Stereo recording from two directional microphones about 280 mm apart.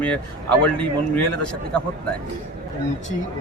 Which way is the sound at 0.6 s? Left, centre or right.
Centre.